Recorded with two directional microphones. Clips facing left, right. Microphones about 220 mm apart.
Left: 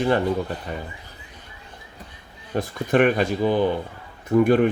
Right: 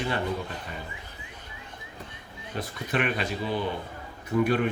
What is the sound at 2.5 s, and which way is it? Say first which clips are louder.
A man's voice: left 10 dB; 50° left (ahead or behind).